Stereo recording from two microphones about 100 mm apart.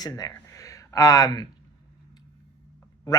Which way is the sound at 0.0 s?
35° left (ahead or behind).